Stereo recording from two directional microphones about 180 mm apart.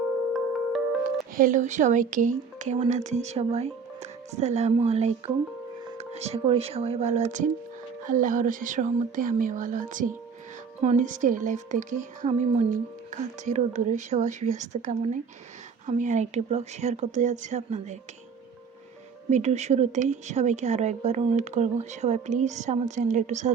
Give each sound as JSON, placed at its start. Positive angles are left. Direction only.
{"t": 1.4, "sound": "a woman's voice", "side_deg": -45}
{"t": 19.3, "sound": "a woman's voice", "side_deg": -40}